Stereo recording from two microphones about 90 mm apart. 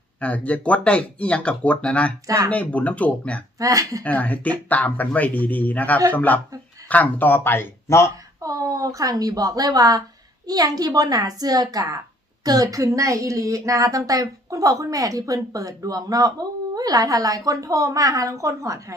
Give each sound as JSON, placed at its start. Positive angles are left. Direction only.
{"t": 0.2, "sound": "speech", "side_deg": 15}
{"t": 2.2, "sound": "speech", "side_deg": -40}
{"t": 2.5, "sound": "speech", "side_deg": 15}
{"t": 3.6, "sound": "speech", "side_deg": -40}
{"t": 4.0, "sound": "speech", "side_deg": 15}
{"t": 8.4, "sound": "speech", "side_deg": -40}